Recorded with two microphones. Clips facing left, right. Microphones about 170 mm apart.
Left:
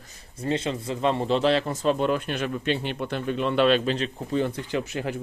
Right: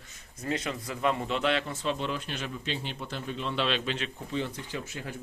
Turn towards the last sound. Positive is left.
turn(degrees=80)